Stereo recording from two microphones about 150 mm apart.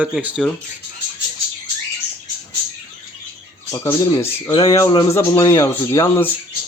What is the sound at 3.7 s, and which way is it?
Speech, 20° left (ahead or behind).